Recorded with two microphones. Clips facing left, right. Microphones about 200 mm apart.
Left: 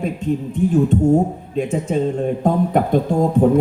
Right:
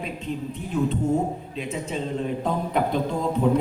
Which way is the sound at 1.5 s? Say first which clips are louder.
Left 10 dB; 45° left (ahead or behind).